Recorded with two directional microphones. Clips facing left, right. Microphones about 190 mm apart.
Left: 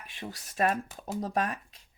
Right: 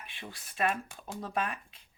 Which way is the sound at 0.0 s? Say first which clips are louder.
Left 5 dB; 40° left (ahead or behind).